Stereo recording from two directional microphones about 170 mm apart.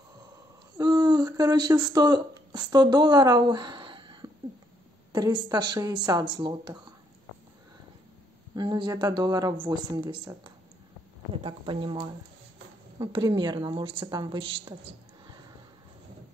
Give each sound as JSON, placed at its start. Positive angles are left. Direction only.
{"t": 0.7, "sound": "a woman's voice", "side_deg": -25}
{"t": 8.5, "sound": "a woman's voice", "side_deg": -25}